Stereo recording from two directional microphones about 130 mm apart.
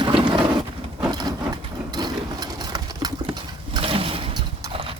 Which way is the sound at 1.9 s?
30° right (ahead or behind).